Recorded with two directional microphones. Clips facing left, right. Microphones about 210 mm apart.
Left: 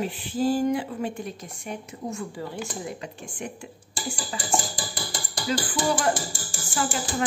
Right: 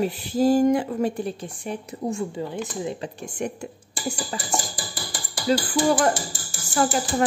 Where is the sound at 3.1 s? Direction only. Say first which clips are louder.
Right 6 dB; 40° right (ahead or behind).